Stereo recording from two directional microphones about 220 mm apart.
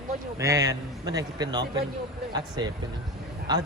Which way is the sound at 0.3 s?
15° right (ahead or behind).